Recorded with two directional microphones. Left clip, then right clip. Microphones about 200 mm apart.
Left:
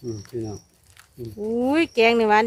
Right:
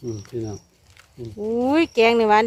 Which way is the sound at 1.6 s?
20° right (ahead or behind).